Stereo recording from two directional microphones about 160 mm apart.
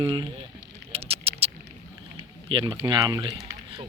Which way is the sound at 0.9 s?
40° right (ahead or behind).